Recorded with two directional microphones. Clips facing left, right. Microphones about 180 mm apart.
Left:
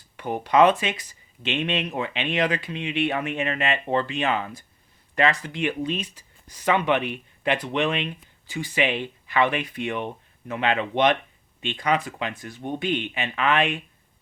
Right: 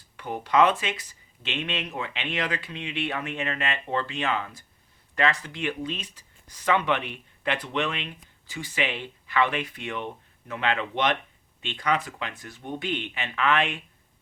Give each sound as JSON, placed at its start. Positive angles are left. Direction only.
{"t": 0.2, "sound": "speech", "side_deg": 20}